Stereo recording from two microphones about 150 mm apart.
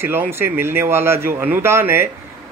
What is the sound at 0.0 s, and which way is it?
A man's voice, 15° right (ahead or behind).